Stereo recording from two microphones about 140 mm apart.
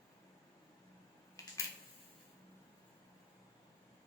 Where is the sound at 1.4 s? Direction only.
25° left (ahead or behind).